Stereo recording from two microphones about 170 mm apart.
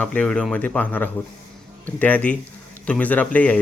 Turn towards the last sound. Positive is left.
turn(degrees=10)  # may be behind; listen again after turning